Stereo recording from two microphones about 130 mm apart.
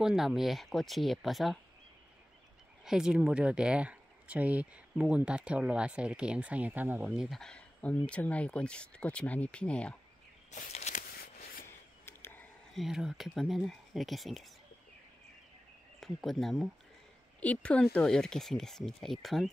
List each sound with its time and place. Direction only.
0.0 s speech: 5° right (ahead or behind)
2.8 s speech: 5° right (ahead or behind)
7.2 s speech: centre (ahead or behind)
10.5 s a sound: 65° left (ahead or behind)
11.6 s a sound: 20° left (ahead or behind)
12.7 s speech: 5° right (ahead or behind)
16.0 s speech: centre (ahead or behind)